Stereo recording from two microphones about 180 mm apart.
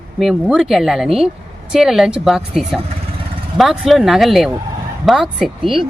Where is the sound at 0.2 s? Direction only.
Centre (ahead or behind).